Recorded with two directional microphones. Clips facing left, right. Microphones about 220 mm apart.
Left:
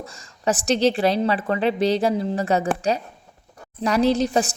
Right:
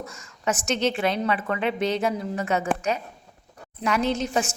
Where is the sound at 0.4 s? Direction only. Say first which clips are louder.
Left 5 dB; 35° left (ahead or behind).